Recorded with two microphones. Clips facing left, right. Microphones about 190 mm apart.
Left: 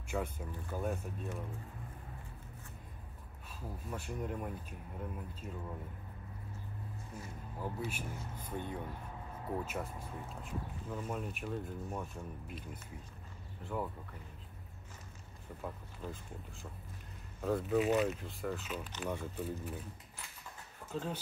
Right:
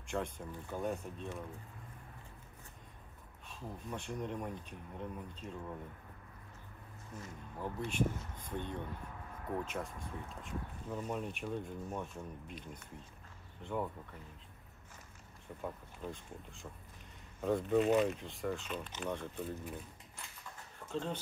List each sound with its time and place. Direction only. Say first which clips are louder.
0.1 s speech: even; 5° left (ahead or behind)
3.5 s speech: even; 5° left (ahead or behind)
7.5 s speech: right 3 dB; 5° left (ahead or behind)
15.6 s speech: right 1 dB; centre (ahead or behind)
17.4 s speech: right 1 dB; centre (ahead or behind)
20.9 s speech: right 1 dB; 5° left (ahead or behind)